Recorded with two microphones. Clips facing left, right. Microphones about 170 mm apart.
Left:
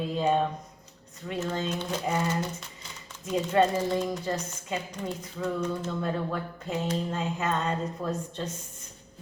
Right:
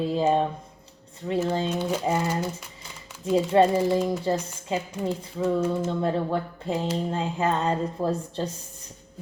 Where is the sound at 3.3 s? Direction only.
30° right (ahead or behind).